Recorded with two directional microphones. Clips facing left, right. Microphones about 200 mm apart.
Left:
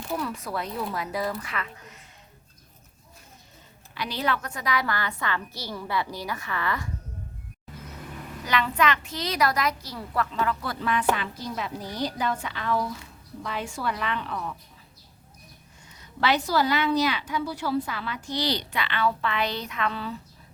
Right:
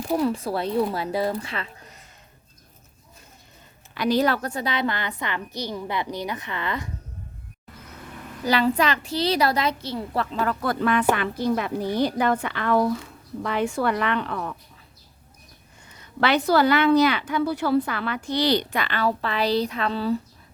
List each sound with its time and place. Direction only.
0.1 s a woman's voice: 30° right (ahead or behind)
3.9 s a woman's voice: 45° right (ahead or behind); by 6.9 s 20° right (ahead or behind)
8.4 s a woman's voice: 35° right (ahead or behind); by 14.5 s 60° right (ahead or behind)
16.2 s a woman's voice: 60° right (ahead or behind); by 20.1 s 35° right (ahead or behind)